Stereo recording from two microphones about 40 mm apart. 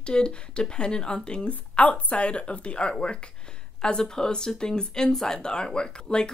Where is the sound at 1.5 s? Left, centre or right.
Left.